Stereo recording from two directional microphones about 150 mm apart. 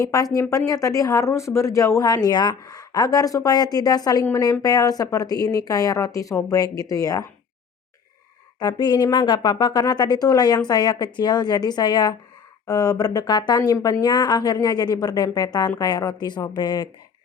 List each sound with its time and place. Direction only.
0.0 s speech: 25° left (ahead or behind)
8.5 s speech: 30° left (ahead or behind)